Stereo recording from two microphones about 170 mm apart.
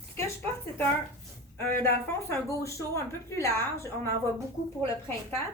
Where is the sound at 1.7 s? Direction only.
15° left (ahead or behind).